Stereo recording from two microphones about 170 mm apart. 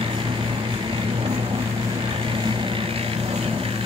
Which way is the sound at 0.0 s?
30° right (ahead or behind).